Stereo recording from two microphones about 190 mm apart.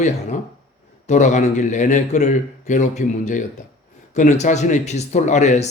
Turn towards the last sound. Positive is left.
turn(degrees=40)  # may be behind; listen again after turning